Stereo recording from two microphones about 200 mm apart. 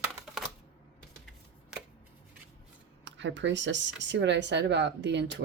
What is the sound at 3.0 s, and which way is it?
Speech, 65° right (ahead or behind).